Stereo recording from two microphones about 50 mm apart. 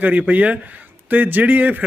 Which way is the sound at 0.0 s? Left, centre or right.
Right.